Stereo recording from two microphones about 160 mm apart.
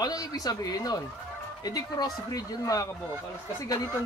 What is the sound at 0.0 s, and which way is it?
Speech, 25° left (ahead or behind).